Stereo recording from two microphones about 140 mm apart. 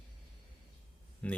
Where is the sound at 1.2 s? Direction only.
10° left (ahead or behind).